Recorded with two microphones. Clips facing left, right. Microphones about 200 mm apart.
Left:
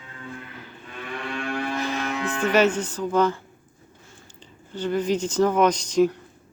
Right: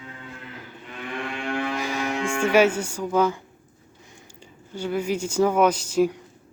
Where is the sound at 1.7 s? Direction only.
10° right (ahead or behind).